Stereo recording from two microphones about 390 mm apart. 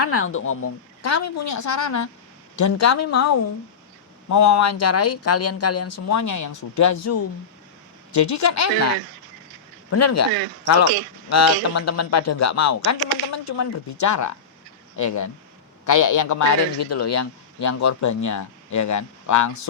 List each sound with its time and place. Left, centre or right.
0.1 s a man's voice: left
9.9 s speech: left
11.3 s a man's voice: left